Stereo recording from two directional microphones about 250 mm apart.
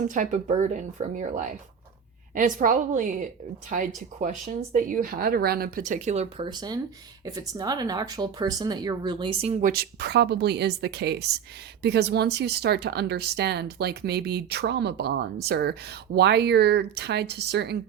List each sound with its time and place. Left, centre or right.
0.1 s speech: right